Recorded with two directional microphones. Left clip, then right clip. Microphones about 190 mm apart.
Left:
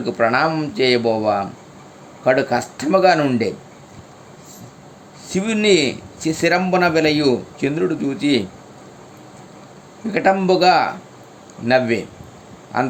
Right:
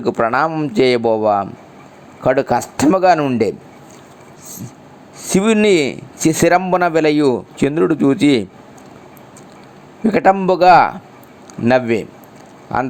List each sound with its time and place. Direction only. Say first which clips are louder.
0.0 s speech: right 1 dB; 35° right (ahead or behind)
5.2 s speech: right 5 dB; 40° right (ahead or behind)
10.1 s speech: right 3 dB; 35° right (ahead or behind)